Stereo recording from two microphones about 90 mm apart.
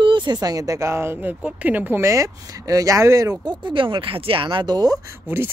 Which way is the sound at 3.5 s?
65° right (ahead or behind).